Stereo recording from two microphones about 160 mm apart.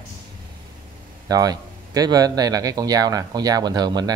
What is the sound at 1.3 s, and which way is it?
A man's voice, 25° right (ahead or behind).